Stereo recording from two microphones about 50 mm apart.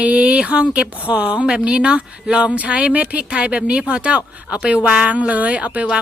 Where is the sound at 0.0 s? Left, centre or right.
Right.